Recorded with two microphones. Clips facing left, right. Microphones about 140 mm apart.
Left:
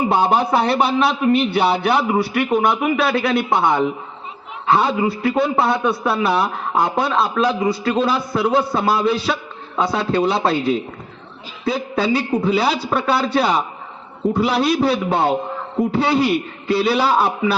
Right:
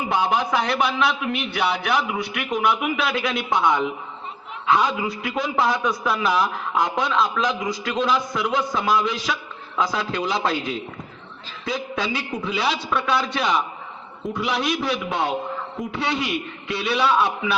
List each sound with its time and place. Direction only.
0.0 s a man's voice: 30° left (ahead or behind)
3.2 s speech: 60° left (ahead or behind)
3.5 s a man's voice: 30° left (ahead or behind)